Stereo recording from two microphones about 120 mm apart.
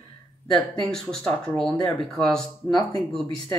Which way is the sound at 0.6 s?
5° left (ahead or behind).